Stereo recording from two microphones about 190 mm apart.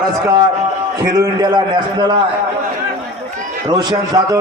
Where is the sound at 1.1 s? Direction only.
20° right (ahead or behind).